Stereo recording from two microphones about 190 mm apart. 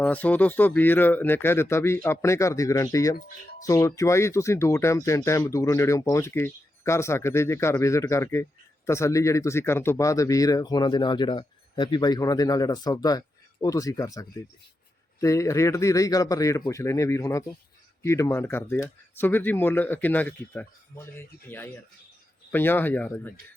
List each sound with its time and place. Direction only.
0.0 s speech: 10° left (ahead or behind)